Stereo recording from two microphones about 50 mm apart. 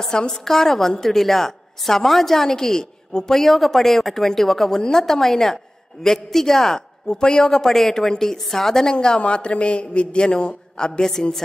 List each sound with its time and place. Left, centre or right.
0.0 s a woman's voice: centre
8.9 s a man's voice: centre